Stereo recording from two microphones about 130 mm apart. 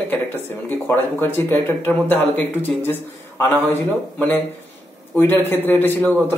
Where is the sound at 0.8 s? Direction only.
15° left (ahead or behind).